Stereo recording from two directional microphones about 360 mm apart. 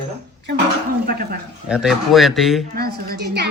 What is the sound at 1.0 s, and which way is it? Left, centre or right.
Speech, right.